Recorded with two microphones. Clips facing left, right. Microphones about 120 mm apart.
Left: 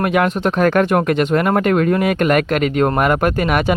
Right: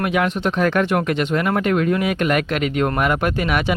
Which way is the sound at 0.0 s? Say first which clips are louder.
Left 4 dB; 50° left (ahead or behind).